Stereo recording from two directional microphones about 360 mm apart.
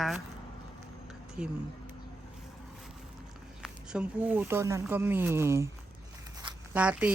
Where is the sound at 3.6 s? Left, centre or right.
Centre.